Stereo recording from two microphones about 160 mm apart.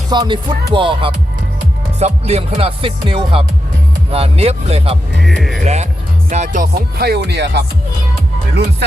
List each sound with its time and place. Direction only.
0.1 s speech: 30° right (ahead or behind)
0.7 s music: 30° right (ahead or behind)
5.2 s music: centre (ahead or behind)
5.6 s speech: 45° right (ahead or behind)
6.3 s music: 50° right (ahead or behind); by 7.6 s 90° right